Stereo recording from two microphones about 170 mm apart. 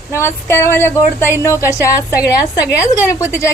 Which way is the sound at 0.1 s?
15° left (ahead or behind).